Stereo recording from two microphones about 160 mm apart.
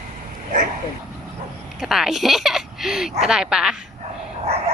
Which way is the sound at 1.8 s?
5° right (ahead or behind).